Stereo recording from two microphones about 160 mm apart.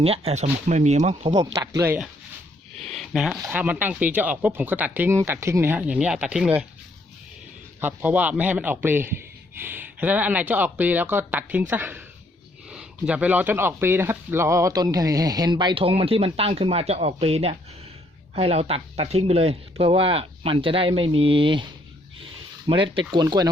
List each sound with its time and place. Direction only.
0.0 s speech: 35° right (ahead or behind)
1.4 s speech: 20° right (ahead or behind)
2.8 s speech: centre (ahead or behind)
7.8 s speech: 10° right (ahead or behind)